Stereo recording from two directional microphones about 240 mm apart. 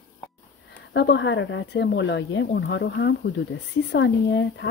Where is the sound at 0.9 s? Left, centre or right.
Left.